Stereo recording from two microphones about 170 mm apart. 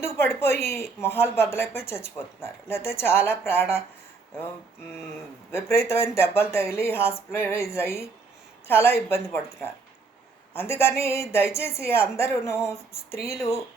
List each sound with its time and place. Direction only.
0.0 s a woman's voice: 15° left (ahead or behind)
5.5 s a woman's voice: 15° left (ahead or behind)
10.5 s a woman's voice: 15° left (ahead or behind)